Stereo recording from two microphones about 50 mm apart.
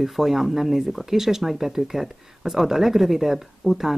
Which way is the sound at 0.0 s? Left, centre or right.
Centre.